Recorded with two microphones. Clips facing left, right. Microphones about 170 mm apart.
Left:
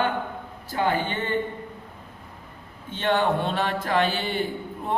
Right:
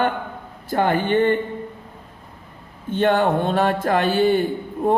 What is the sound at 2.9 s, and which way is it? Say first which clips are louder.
A woman's voice: right 5 dB; 50° right (ahead or behind).